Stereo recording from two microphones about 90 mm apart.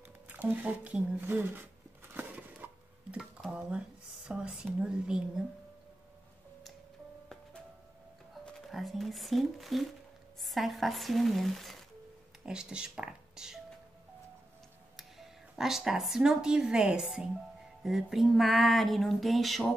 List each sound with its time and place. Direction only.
0.3 s speech: 20° right (ahead or behind)
2.1 s dishes: 20° right (ahead or behind)
3.5 s speech: 10° right (ahead or behind)
8.5 s a sound: centre (ahead or behind)
12.4 s speech: 10° right (ahead or behind)
15.0 s speech: 5° right (ahead or behind)
17.8 s a sound: centre (ahead or behind)